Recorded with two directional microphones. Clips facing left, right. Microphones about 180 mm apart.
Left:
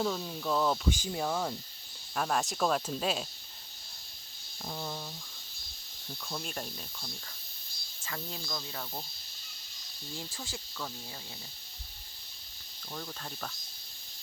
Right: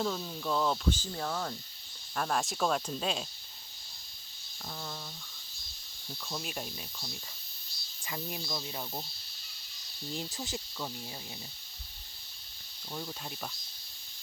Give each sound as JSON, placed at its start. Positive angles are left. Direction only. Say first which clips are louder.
{"t": 0.0, "sound": "speech", "louder": "left 1 dB", "side_deg": 5}
{"t": 0.9, "sound": "speech", "louder": "left 3 dB", "side_deg": 15}
{"t": 4.7, "sound": "speech", "louder": "left 4 dB", "side_deg": 15}
{"t": 6.2, "sound": "speech", "louder": "even", "side_deg": -5}
{"t": 8.0, "sound": "cricket", "louder": "right 2 dB", "side_deg": -15}
{"t": 10.1, "sound": "cricket", "louder": "right 4 dB", "side_deg": -20}
{"t": 12.9, "sound": "cricket", "louder": "right 1 dB", "side_deg": -10}